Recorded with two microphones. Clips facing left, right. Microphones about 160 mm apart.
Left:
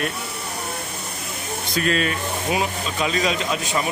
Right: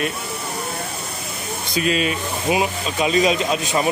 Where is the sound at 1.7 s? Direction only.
15° right (ahead or behind).